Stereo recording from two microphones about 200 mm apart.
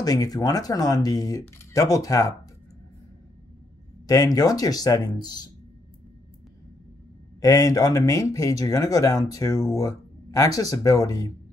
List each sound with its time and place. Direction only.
0.0 s speech: 20° left (ahead or behind)
4.1 s speech: 20° left (ahead or behind)
7.3 s speech: 15° left (ahead or behind)